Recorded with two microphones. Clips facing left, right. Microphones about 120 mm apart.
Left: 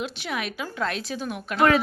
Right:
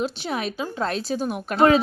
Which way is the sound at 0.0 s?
35° right (ahead or behind).